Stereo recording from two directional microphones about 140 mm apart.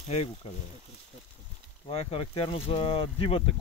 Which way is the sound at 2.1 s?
40° left (ahead or behind).